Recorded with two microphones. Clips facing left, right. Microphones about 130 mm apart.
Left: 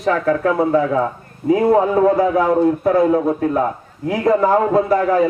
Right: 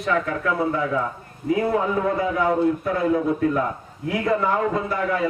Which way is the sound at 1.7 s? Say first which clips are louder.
Left 8 dB; 45° left (ahead or behind).